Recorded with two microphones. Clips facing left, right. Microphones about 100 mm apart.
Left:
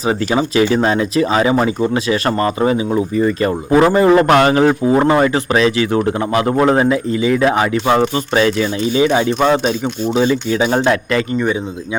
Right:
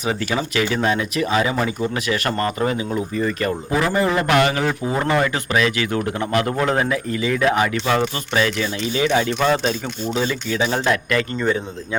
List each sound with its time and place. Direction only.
0.0 s speech: 30° left (ahead or behind)